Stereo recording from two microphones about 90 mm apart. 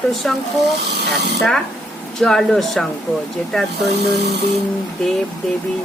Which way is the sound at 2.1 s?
5° left (ahead or behind).